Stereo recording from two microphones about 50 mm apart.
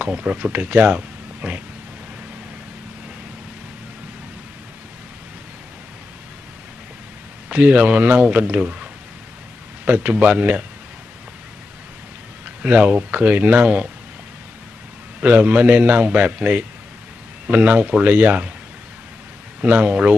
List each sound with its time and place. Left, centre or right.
0.0 s speech: right
7.4 s a man's voice: right
9.8 s a man's voice: right
12.6 s a man's voice: right
15.1 s a man's voice: right
19.6 s a man's voice: right